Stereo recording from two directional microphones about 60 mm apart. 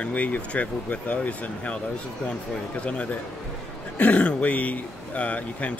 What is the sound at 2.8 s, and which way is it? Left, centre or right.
Speech, centre.